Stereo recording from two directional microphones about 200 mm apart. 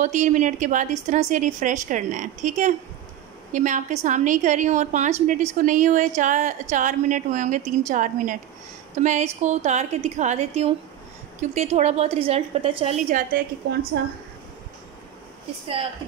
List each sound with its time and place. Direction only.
0.0 s a woman's voice: 40° right (ahead or behind)